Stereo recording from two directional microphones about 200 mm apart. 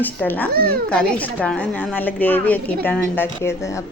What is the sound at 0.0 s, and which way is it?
A woman's voice, 10° left (ahead or behind).